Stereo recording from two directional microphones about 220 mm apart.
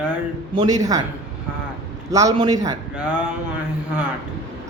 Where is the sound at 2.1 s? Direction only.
15° right (ahead or behind).